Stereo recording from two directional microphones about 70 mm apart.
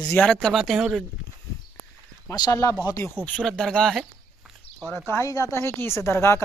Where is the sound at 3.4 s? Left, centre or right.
Centre.